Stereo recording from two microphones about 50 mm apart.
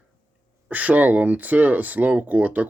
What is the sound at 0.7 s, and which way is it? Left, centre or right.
Speech, right.